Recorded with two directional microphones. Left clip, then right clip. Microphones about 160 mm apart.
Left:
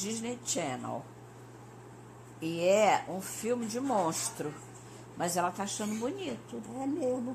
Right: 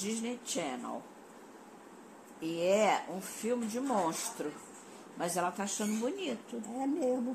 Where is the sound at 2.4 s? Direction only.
30° left (ahead or behind).